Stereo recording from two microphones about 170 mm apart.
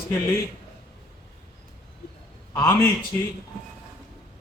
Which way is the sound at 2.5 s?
15° left (ahead or behind).